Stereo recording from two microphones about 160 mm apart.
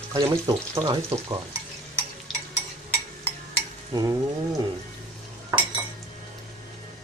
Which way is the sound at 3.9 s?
20° right (ahead or behind).